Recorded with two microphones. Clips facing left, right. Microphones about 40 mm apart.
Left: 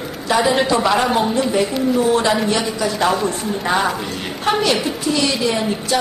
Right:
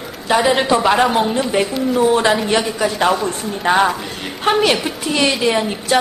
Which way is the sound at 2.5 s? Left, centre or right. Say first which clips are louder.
Right 2 dB; right.